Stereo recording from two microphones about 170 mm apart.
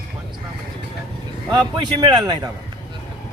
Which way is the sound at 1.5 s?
25° right (ahead or behind).